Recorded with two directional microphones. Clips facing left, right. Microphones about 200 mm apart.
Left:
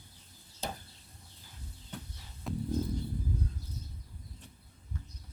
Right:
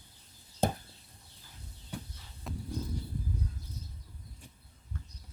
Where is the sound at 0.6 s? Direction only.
55° right (ahead or behind).